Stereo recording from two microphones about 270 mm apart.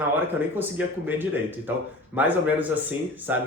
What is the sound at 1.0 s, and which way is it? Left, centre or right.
Speech, centre.